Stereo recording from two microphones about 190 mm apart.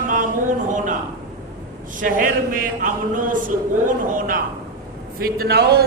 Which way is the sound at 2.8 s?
45° right (ahead or behind).